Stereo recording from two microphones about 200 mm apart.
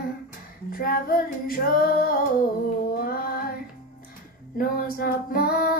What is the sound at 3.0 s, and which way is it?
Music, 50° left (ahead or behind).